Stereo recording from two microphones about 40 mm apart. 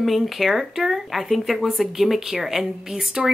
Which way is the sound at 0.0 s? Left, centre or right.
Centre.